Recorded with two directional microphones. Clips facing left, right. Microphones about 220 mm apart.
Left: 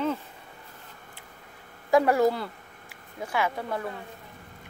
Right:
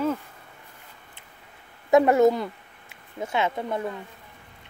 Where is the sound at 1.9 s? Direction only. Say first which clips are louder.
Right 4 dB; 20° right (ahead or behind).